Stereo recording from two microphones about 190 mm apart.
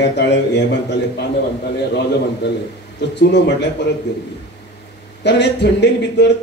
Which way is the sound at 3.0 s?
65° left (ahead or behind).